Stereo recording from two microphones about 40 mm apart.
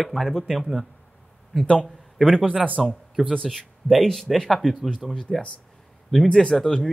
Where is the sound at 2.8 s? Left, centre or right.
Centre.